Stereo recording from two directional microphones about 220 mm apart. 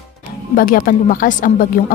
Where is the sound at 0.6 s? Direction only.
40° left (ahead or behind).